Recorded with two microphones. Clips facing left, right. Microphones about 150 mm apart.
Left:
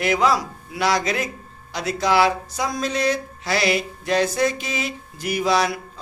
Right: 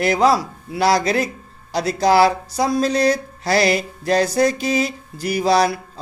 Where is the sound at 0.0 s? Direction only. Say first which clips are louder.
Right 4 dB; 35° right (ahead or behind).